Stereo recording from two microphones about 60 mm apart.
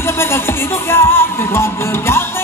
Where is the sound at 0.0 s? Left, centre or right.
Left.